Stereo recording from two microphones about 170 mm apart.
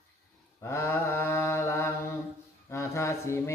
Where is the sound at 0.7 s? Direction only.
15° left (ahead or behind).